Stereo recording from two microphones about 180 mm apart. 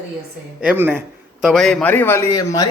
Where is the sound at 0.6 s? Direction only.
10° right (ahead or behind).